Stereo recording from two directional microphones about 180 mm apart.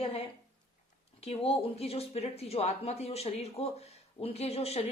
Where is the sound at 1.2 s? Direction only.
35° left (ahead or behind).